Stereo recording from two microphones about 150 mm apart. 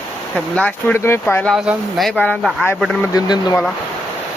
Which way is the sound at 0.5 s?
10° left (ahead or behind).